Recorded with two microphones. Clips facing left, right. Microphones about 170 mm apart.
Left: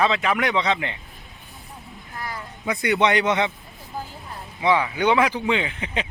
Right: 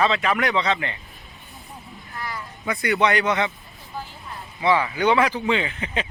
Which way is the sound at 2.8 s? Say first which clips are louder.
Left 1 dB; 20° left (ahead or behind).